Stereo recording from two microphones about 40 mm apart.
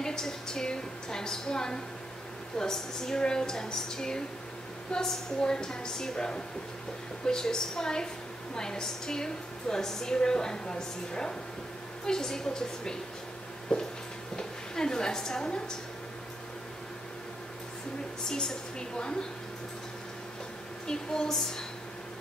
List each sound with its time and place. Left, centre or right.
0.0 s a woman's voice: centre
18.3 s a woman's voice: centre
20.8 s a woman's voice: centre